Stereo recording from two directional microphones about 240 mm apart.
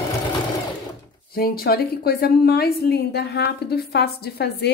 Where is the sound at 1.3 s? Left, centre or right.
Left.